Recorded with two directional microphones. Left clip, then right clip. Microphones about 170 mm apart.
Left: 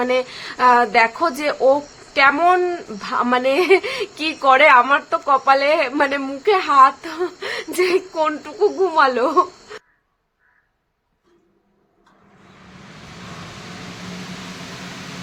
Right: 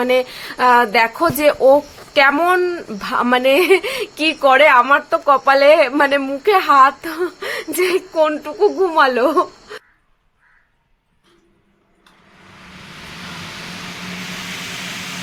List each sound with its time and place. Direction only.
0.0 s speech: 25° right (ahead or behind)